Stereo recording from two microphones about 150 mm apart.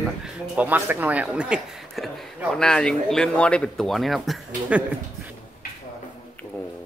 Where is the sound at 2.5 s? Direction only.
5° left (ahead or behind).